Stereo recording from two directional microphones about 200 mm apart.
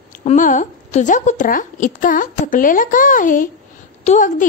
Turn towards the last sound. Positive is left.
turn(degrees=40)  # may be behind; listen again after turning